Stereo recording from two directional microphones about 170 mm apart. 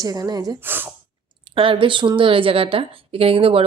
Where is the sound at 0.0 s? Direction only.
20° right (ahead or behind).